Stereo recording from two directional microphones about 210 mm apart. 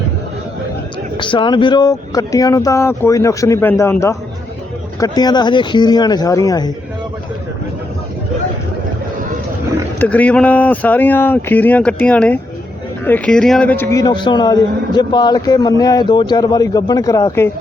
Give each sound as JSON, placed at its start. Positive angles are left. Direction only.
{"t": 1.1, "sound": "a man's voice", "side_deg": 25}
{"t": 10.0, "sound": "a man's voice", "side_deg": 5}